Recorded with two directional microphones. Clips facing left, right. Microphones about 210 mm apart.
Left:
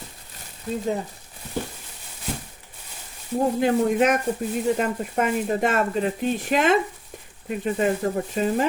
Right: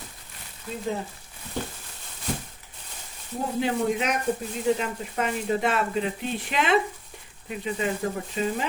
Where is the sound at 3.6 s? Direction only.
50° left (ahead or behind).